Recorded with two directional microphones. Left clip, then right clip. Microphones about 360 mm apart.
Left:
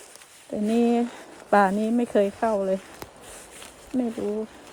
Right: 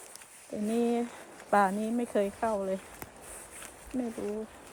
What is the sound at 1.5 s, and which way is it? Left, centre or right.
Speech, left.